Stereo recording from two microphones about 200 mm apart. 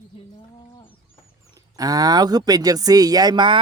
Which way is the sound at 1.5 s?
20° right (ahead or behind).